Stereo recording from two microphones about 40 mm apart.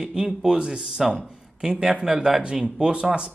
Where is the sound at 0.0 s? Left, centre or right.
Right.